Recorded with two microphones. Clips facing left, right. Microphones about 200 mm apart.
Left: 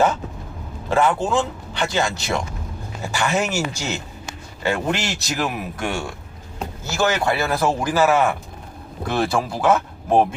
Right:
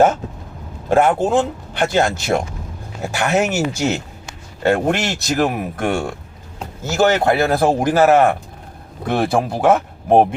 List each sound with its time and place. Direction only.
0.9 s a man's voice: 50° right (ahead or behind)